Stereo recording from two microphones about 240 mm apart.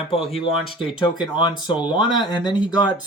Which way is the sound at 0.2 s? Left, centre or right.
Centre.